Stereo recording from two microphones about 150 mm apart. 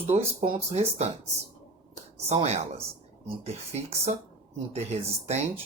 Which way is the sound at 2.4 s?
45° right (ahead or behind).